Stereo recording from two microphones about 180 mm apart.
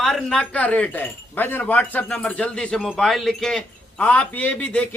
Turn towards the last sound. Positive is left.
turn(degrees=5)  # may be behind; listen again after turning